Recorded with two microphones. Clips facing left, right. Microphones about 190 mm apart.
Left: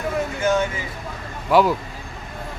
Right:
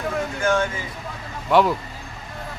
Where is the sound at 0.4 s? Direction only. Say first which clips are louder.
Even; 10° left (ahead or behind).